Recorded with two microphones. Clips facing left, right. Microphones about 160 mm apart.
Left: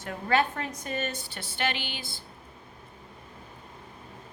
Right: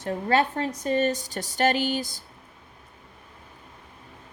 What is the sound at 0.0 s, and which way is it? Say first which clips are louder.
A woman's voice: right 3 dB; 35° right (ahead or behind).